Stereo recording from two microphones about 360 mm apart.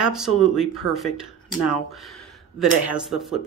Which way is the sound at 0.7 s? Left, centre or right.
Left.